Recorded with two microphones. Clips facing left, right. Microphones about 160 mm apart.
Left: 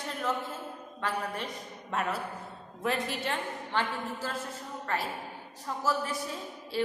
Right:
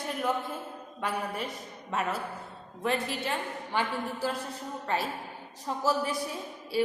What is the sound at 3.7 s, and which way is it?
A woman's voice, 15° right (ahead or behind).